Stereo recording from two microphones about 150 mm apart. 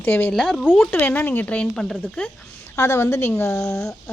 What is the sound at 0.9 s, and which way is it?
Speech, 15° left (ahead or behind).